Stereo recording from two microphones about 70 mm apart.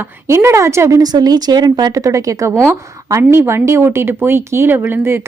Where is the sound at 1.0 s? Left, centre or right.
Right.